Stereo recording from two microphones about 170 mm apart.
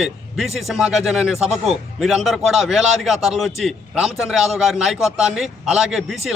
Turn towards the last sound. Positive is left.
turn(degrees=0)  # may be behind; listen again after turning